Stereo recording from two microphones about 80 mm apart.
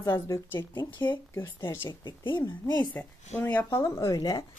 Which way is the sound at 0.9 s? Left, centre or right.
Left.